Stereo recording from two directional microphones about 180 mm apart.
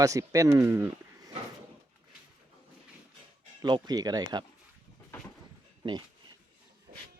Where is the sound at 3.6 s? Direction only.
25° right (ahead or behind).